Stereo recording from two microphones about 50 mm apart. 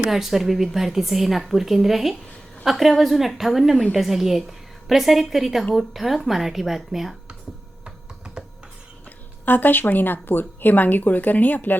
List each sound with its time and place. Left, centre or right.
0.1 s a woman's voice: centre
7.9 s computer keyboard: centre
9.0 s speech: left